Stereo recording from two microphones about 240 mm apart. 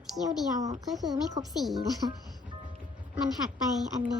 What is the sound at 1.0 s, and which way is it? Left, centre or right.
Speech, centre.